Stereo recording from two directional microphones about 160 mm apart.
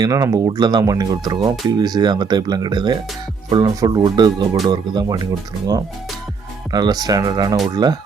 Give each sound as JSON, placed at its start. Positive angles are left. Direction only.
{"t": 0.0, "sound": "speech", "side_deg": -20}